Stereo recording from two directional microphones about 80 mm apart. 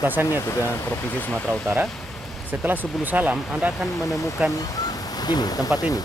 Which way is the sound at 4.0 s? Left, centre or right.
Left.